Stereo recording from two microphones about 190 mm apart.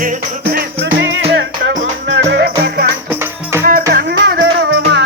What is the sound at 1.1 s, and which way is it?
Music, 70° right (ahead or behind).